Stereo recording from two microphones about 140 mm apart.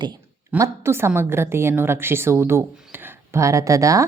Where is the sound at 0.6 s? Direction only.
20° right (ahead or behind).